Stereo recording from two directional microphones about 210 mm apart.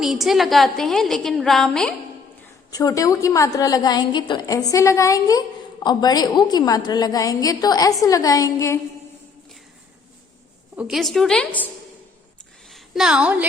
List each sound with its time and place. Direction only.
0.0 s a woman's voice: centre (ahead or behind)
2.6 s a woman's voice: 15° left (ahead or behind)
10.8 s a woman's voice: centre (ahead or behind)
12.7 s a woman's voice: centre (ahead or behind)